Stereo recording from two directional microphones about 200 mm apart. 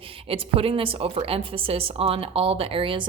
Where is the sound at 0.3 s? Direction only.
30° right (ahead or behind).